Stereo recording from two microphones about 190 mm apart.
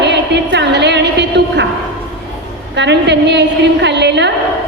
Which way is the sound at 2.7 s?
65° right (ahead or behind).